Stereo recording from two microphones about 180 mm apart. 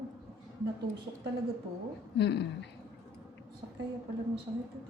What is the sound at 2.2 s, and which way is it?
Speech, 70° left (ahead or behind).